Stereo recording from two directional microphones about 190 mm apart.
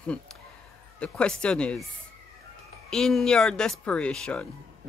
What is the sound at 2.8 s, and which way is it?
Speech, 5° left (ahead or behind).